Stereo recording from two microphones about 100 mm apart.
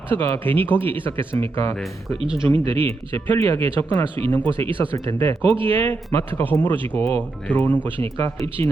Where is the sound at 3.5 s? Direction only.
65° right (ahead or behind).